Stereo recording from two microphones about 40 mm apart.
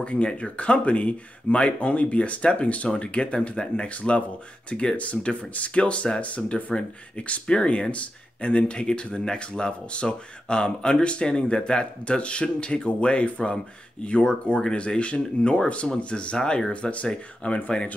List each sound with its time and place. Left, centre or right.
0.0 s speech: left
6.2 s speech: left